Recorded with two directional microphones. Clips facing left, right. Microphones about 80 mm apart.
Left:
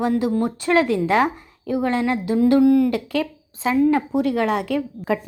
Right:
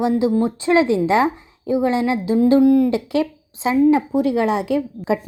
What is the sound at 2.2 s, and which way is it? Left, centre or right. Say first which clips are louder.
Speech: right 2 dB; left.